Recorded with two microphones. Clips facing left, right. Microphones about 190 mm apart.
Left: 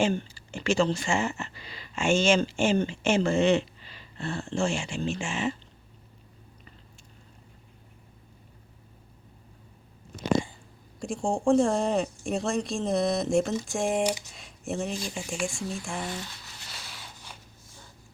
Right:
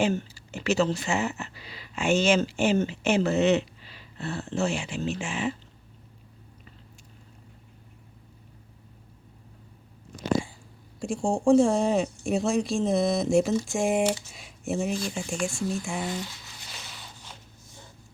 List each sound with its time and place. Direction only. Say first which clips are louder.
0.0 s speech: even; 5° right (ahead or behind)
10.3 s a sound: left 1 dB; centre (ahead or behind)
11.0 s speech: right 2 dB; centre (ahead or behind)
14.0 s speech: right 2 dB; 15° left (ahead or behind)
14.3 s speech: right 3 dB; centre (ahead or behind)